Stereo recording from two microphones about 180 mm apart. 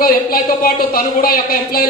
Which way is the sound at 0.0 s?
55° left (ahead or behind).